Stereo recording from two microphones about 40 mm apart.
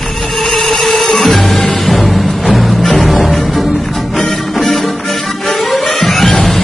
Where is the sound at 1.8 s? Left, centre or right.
Centre.